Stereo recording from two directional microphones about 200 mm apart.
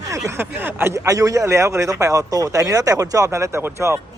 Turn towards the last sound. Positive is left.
turn(degrees=-15)  # may be behind; listen again after turning